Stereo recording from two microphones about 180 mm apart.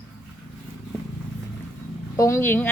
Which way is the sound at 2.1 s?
15° left (ahead or behind).